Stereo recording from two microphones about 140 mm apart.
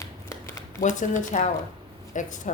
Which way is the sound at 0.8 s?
65° left (ahead or behind).